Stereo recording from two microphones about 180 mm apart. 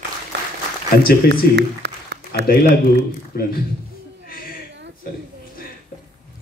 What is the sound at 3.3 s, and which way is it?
Speech, 60° left (ahead or behind).